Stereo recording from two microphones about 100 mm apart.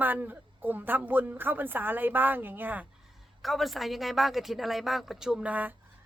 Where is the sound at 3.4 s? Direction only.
Centre (ahead or behind).